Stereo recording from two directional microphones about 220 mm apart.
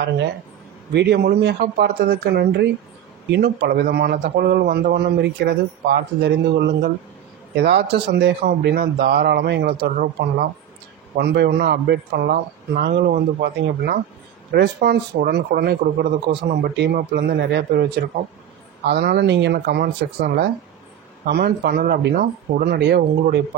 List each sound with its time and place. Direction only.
0.9 s speech: 50° right (ahead or behind)
7.5 s speech: 50° right (ahead or behind)
11.1 s speech: 50° right (ahead or behind)